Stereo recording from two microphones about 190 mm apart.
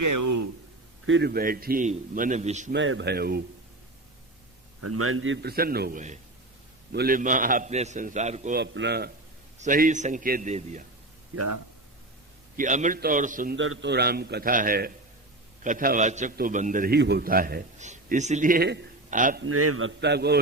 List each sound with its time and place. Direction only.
1.0 s a man's voice: 80° right
1.3 s a man's voice: 50° right (ahead or behind)
2.7 s a man's voice: 80° right; by 3.4 s 55° right (ahead or behind)
5.1 s a man's voice: 85° right
5.5 s a man's voice: 55° right (ahead or behind); by 8.5 s 40° right (ahead or behind)
8.5 s a man's voice: 65° right (ahead or behind)
9.6 s a man's voice: 45° right (ahead or behind)
12.5 s a man's voice: 40° right (ahead or behind)
13.6 s a man's voice: 75° right (ahead or behind); by 18.9 s 60° right (ahead or behind)
19.1 s a man's voice: 45° right (ahead or behind)
19.4 s a man's voice: 80° right; by 20.4 s 60° right (ahead or behind)